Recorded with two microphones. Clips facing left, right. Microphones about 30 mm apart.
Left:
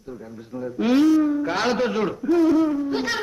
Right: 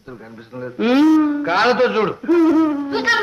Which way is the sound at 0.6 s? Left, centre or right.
Right.